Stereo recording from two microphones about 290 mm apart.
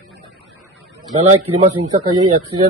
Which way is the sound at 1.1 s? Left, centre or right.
Right.